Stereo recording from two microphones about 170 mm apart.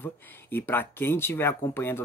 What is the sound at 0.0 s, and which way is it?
Speech, 10° left (ahead or behind).